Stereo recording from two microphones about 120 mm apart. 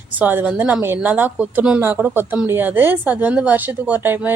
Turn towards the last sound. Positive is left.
turn(degrees=-15)  # may be behind; listen again after turning